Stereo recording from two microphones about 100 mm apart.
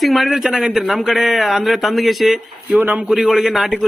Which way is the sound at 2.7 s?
15° right (ahead or behind).